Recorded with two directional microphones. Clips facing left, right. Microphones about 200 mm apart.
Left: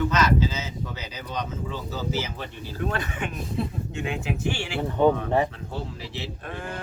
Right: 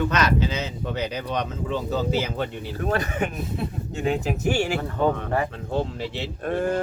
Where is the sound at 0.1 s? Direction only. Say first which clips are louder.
Even; 65° right (ahead or behind).